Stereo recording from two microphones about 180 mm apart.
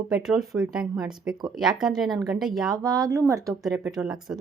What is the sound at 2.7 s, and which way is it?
Speech, 20° right (ahead or behind).